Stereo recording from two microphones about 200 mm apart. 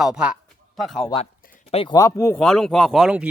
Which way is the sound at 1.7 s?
30° left (ahead or behind).